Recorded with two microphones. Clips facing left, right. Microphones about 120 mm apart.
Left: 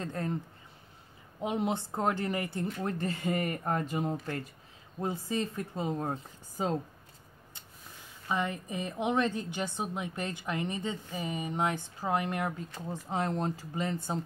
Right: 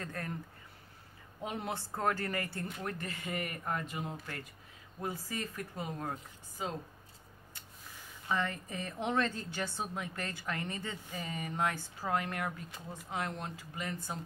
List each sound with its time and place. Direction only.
0.0 s a woman's voice: 25° left (ahead or behind)
1.4 s a woman's voice: 20° left (ahead or behind); by 4.4 s 40° left (ahead or behind)
5.0 s a woman's voice: 25° left (ahead or behind)
8.3 s a woman's voice: 15° left (ahead or behind)